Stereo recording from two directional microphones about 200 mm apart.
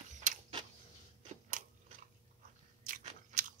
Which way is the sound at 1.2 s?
40° right (ahead or behind).